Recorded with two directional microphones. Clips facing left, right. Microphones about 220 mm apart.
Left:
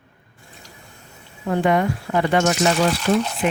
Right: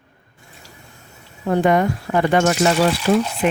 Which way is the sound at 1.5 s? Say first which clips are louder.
Right 2 dB; 45° right (ahead or behind).